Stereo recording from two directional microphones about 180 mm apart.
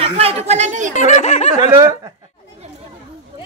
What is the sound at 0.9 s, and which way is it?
Speech, 40° left (ahead or behind).